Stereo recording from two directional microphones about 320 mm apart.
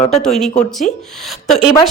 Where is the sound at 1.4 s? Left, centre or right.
Centre.